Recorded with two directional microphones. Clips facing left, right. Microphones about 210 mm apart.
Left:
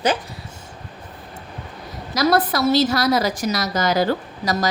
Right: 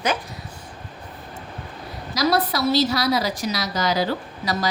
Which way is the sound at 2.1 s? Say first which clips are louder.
Left 3 dB; 50° left (ahead or behind).